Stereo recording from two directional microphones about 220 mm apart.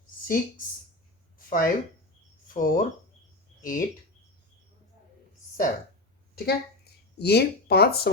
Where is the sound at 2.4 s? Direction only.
40° left (ahead or behind).